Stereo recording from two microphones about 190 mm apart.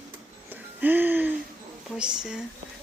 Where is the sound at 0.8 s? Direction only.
10° right (ahead or behind).